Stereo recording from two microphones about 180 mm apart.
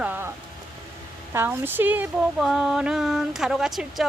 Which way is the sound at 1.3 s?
10° right (ahead or behind).